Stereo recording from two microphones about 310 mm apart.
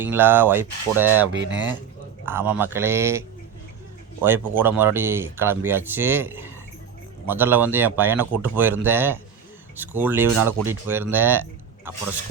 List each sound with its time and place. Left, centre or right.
0.0 s speech: centre
1.3 s speech: right
2.2 s speech: centre